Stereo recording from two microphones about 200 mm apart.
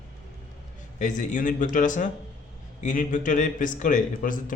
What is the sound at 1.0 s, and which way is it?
A man's voice, 40° left (ahead or behind).